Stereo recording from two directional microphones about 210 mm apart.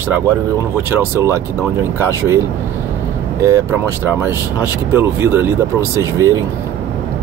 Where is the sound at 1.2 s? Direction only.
15° right (ahead or behind).